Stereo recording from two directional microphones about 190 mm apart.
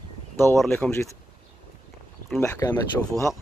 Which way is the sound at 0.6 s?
10° left (ahead or behind).